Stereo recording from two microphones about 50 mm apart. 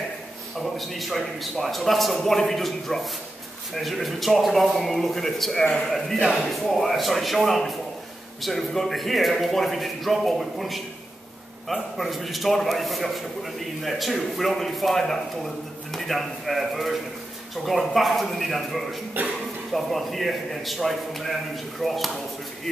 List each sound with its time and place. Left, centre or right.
0.6 s a man's voice: centre
19.2 s speech: right
19.7 s a man's voice: centre